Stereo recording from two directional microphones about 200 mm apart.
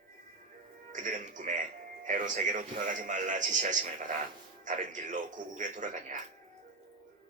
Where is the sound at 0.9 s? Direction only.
40° right (ahead or behind).